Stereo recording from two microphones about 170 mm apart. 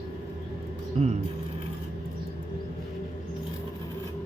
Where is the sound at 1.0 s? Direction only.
35° right (ahead or behind).